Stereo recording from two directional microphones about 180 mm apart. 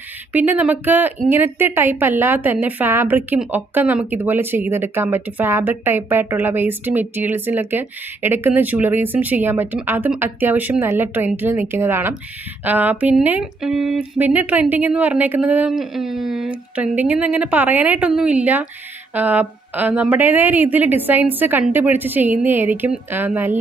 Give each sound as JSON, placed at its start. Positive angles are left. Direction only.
{"t": 0.3, "sound": "a woman's voice", "side_deg": -10}